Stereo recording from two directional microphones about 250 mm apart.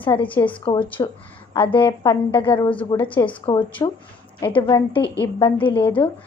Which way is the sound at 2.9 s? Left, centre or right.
Centre.